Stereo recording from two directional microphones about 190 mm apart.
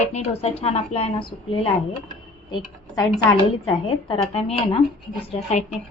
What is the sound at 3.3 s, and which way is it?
A woman's voice, 25° left (ahead or behind).